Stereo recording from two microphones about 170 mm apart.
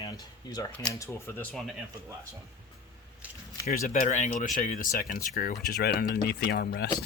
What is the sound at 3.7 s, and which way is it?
Speech, 50° left (ahead or behind).